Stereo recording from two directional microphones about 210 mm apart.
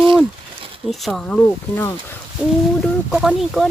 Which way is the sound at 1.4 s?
10° left (ahead or behind).